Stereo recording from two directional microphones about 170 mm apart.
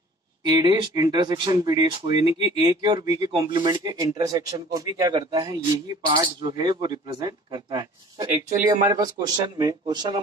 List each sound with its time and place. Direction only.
0.5 s speech: 25° right (ahead or behind)